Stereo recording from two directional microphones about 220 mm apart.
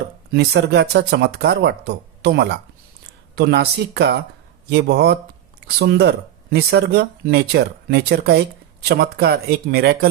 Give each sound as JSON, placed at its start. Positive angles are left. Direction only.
{"t": 0.3, "sound": "speech", "side_deg": -50}